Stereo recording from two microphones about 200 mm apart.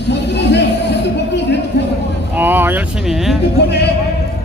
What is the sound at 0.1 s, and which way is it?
Music, 60° left (ahead or behind).